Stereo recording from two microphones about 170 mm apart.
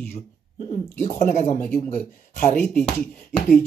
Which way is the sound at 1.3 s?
45° left (ahead or behind).